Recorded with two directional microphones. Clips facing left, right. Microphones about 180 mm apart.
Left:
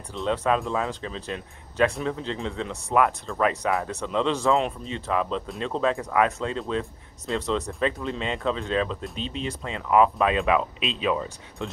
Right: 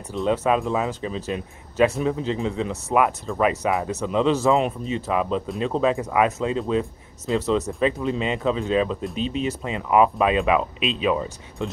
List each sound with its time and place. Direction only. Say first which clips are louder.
0.1 s speech: right 3 dB; 5° right (ahead or behind)